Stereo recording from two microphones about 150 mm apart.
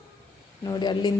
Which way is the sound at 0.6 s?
25° left (ahead or behind).